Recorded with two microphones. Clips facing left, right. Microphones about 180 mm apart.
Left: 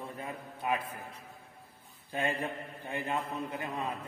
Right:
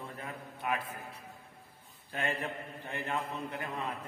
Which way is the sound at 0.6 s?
25° left (ahead or behind).